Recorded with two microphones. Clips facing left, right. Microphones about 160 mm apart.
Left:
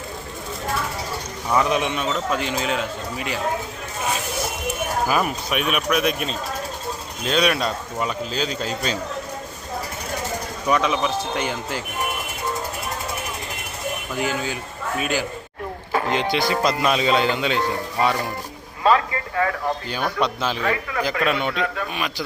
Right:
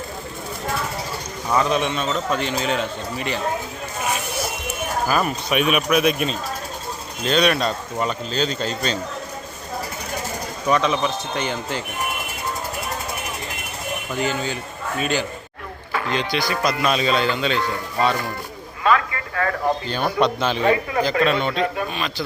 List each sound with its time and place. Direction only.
1.5 s speech: 15° left (ahead or behind)
5.0 s speech: 10° left (ahead or behind)
5.5 s speech: centre (ahead or behind)
10.7 s speech: 10° left (ahead or behind)
14.2 s speech: 5° left (ahead or behind)
16.3 s speech: 25° left (ahead or behind)
18.8 s a sound: 30° left (ahead or behind)
20.1 s speech: centre (ahead or behind)
20.6 s speech: 30° right (ahead or behind)
21.2 s speech: 10° left (ahead or behind)
21.5 s speech: 30° right (ahead or behind)